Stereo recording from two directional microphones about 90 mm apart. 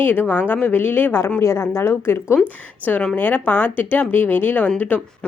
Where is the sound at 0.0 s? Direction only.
20° left (ahead or behind).